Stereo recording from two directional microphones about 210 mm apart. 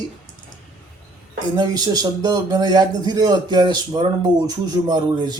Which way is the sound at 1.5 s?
20° right (ahead or behind).